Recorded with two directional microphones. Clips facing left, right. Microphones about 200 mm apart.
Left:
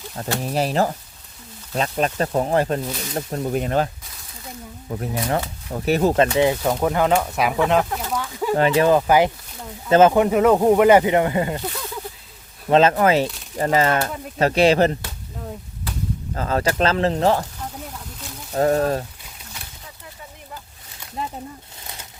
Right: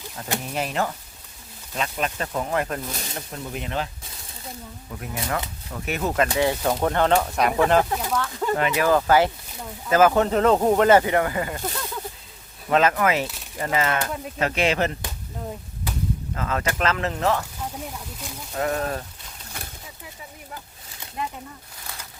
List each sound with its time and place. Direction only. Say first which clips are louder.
0.4 s speech: left 7 dB; 35° left (ahead or behind)
4.9 s speech: left 6 dB; 35° left (ahead or behind)
6.4 s speech: left 3 dB; 15° left (ahead or behind)
8.5 s speech: left 5 dB; 30° left (ahead or behind)
10.2 s speech: left 3 dB; 10° left (ahead or behind)
12.7 s speech: left 5 dB; 30° left (ahead or behind)
16.3 s speech: left 7 dB; 35° left (ahead or behind)
18.5 s speech: left 7 dB; 35° left (ahead or behind)